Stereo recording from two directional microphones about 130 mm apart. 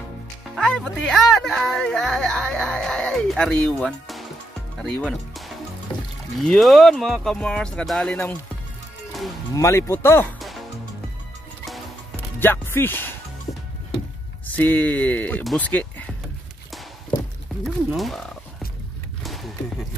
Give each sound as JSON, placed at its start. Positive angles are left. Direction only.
{"t": 0.6, "sound": "speech", "side_deg": 5}
{"t": 6.4, "sound": "speech", "side_deg": 0}
{"t": 9.6, "sound": "speech", "side_deg": 20}
{"t": 12.4, "sound": "speech", "side_deg": 15}
{"t": 14.5, "sound": "speech", "side_deg": 10}
{"t": 17.6, "sound": "speech", "side_deg": 0}
{"t": 19.2, "sound": "a sound", "side_deg": 0}